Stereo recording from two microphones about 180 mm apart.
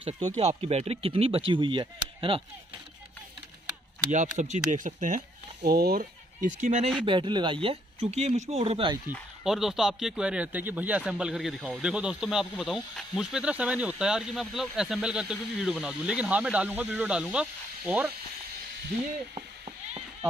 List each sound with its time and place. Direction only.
0.0 s speech: 20° right (ahead or behind)
0.4 s speech: 35° right (ahead or behind)
4.1 s speech: 40° right (ahead or behind)
5.6 s speech: 60° right (ahead or behind); by 6.9 s 40° right (ahead or behind)
7.1 s speech: 25° right (ahead or behind)
9.4 s speech: centre (ahead or behind)